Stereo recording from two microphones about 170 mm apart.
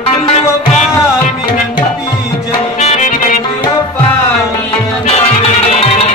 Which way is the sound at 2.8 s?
40° left (ahead or behind).